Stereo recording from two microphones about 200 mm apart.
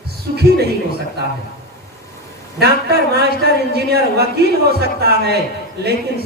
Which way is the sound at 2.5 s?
55° right (ahead or behind).